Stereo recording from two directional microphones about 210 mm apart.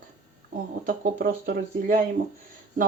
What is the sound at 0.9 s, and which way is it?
Speech, 40° right (ahead or behind).